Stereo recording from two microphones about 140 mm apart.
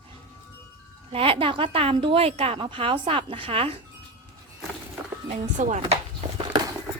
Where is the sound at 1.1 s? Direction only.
40° right (ahead or behind).